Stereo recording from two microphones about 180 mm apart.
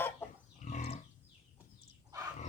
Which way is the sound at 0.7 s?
35° left (ahead or behind).